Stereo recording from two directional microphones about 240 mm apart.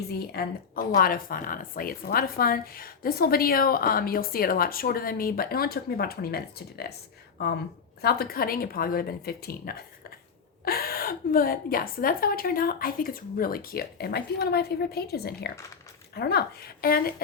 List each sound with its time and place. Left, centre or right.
0.1 s a woman's voice: left
8.0 s a woman's voice: left